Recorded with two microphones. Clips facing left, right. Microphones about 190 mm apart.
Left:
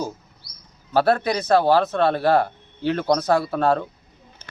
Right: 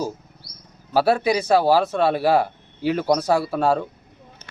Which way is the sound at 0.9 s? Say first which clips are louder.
Right 1 dB; 10° right (ahead or behind).